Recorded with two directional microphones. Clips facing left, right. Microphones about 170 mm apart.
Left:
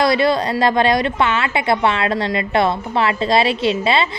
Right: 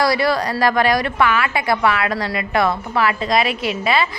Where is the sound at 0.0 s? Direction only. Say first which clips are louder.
Left 2 dB; 20° left (ahead or behind).